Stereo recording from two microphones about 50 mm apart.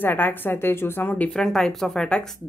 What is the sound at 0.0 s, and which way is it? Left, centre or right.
A woman's voice, left.